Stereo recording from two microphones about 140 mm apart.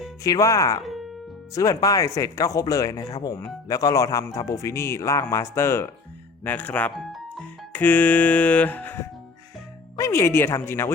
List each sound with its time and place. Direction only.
0.2 s speech: 25° left (ahead or behind)
6.9 s speech: centre (ahead or behind)
7.7 s speech: 10° left (ahead or behind)